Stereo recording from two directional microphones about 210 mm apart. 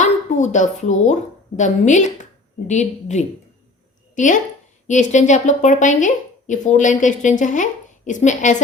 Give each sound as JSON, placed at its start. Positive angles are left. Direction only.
{"t": 0.0, "sound": "a woman's voice", "side_deg": 35}